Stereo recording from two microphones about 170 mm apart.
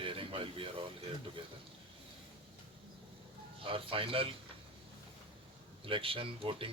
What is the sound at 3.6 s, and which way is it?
Speech, 30° right (ahead or behind).